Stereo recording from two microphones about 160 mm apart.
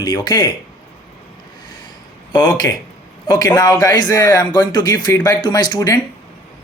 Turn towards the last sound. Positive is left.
turn(degrees=25)  # may be behind; listen again after turning